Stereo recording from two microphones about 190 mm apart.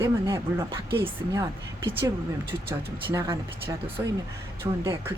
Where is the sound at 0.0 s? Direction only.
15° right (ahead or behind).